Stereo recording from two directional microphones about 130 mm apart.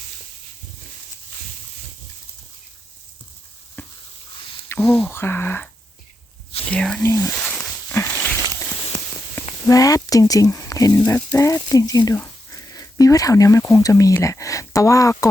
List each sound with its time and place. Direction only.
3.8 s a sound: 15° left (ahead or behind)
5.0 s speech: 15° left (ahead or behind)
6.7 s speech: 5° left (ahead or behind)
7.0 s speech: 20° left (ahead or behind)
7.3 s a sound: 10° left (ahead or behind)
9.6 s speech: 25° left (ahead or behind)
11.0 s speech: 15° left (ahead or behind)
11.3 s speech: 25° left (ahead or behind)